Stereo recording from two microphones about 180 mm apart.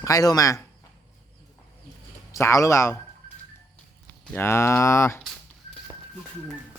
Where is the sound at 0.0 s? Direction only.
20° left (ahead or behind).